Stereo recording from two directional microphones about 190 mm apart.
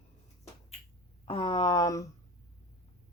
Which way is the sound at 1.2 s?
30° left (ahead or behind).